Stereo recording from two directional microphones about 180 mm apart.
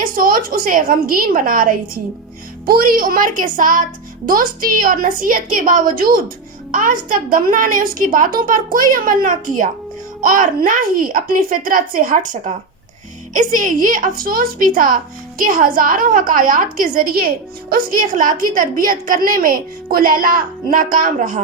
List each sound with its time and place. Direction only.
0.0 s a woman's voice: 50° right (ahead or behind)